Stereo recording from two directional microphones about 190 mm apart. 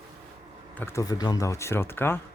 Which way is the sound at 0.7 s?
15° left (ahead or behind).